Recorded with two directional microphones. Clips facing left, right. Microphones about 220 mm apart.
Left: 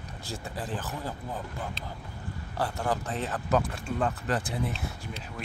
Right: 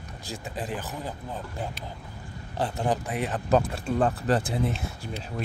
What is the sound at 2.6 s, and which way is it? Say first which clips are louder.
Speech: right 3 dB; 20° right (ahead or behind).